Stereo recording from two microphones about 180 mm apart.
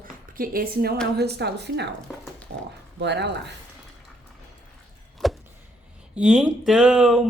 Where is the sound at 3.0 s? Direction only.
70° right (ahead or behind).